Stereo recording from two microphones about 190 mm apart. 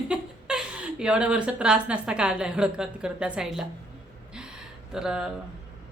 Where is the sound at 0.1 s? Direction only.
5° right (ahead or behind).